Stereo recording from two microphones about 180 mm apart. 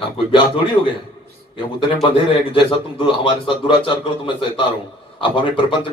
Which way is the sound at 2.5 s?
30° left (ahead or behind).